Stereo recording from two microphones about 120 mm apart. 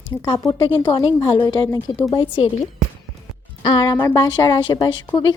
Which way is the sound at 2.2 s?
45° left (ahead or behind).